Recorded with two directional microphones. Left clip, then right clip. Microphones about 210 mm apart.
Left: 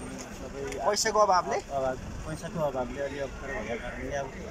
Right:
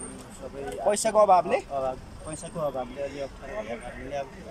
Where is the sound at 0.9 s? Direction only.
25° right (ahead or behind).